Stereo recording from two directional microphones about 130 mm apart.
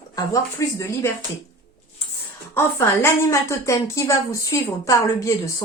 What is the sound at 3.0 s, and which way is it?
A woman's voice, 20° left (ahead or behind).